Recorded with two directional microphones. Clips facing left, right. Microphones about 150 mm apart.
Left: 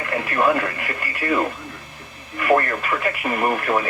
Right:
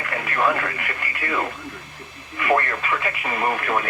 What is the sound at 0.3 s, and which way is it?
Speech, 20° left (ahead or behind).